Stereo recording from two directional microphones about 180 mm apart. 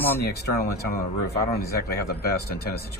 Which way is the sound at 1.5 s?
60° left (ahead or behind).